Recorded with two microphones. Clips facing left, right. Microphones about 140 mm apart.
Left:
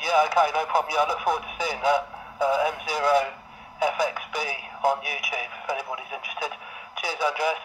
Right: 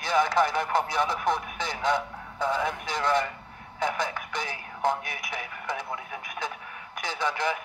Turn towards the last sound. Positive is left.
turn(degrees=10)  # may be behind; listen again after turning